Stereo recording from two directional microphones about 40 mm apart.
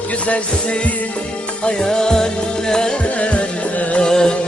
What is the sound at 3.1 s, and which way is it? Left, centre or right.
Music, left.